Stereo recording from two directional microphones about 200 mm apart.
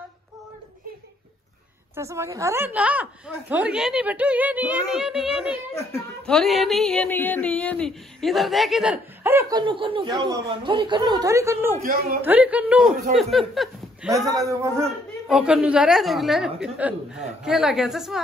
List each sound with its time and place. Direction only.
2.0 s a woman's voice: 15° right (ahead or behind)
5.8 s a woman's voice: 10° left (ahead or behind)
14.5 s a woman's voice: 15° right (ahead or behind)
15.2 s speech: 5° right (ahead or behind)